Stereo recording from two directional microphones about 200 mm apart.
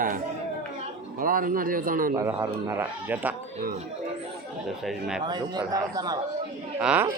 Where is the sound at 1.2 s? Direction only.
45° right (ahead or behind).